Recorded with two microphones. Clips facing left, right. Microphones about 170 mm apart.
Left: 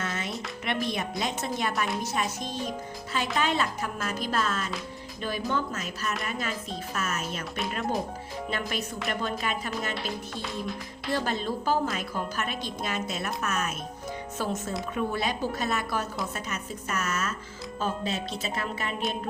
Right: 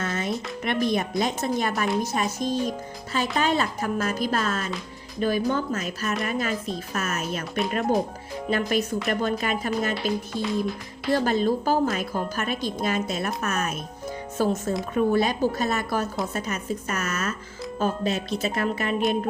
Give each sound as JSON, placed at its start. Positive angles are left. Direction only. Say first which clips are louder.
{"t": 0.0, "sound": "music", "louder": "right 5 dB", "side_deg": -45}
{"t": 0.6, "sound": "a woman's voice", "louder": "right 6 dB", "side_deg": -45}
{"t": 9.9, "sound": "speech", "louder": "right 7 dB", "side_deg": 0}
{"t": 11.1, "sound": "a woman's voice", "louder": "right 7 dB", "side_deg": -45}